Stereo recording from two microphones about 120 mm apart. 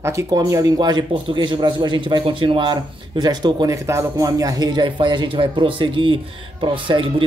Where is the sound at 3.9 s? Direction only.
25° right (ahead or behind).